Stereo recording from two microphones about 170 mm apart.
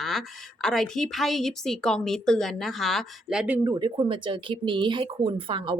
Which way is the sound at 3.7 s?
25° right (ahead or behind).